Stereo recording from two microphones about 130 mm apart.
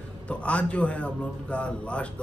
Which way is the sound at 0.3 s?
10° left (ahead or behind).